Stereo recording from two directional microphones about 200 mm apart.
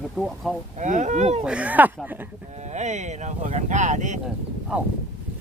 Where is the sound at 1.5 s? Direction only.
5° right (ahead or behind).